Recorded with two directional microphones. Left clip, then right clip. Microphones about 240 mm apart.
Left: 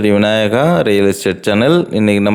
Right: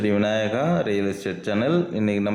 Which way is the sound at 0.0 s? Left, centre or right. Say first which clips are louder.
Left 10 dB; left.